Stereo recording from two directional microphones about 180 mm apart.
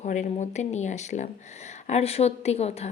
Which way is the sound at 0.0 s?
40° left (ahead or behind).